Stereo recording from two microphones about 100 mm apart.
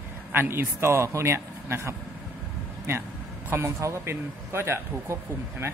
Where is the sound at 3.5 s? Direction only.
25° right (ahead or behind).